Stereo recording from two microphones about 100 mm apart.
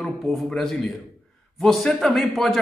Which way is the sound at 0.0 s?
5° left (ahead or behind).